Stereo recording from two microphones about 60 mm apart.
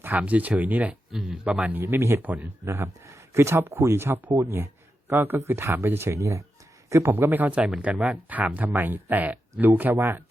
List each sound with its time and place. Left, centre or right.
0.0 s speech: right
1.8 s speech: right
2.2 s speech: right
2.6 s speech: right
4.5 s a sound: right
5.5 s speech: right
7.1 s speech: right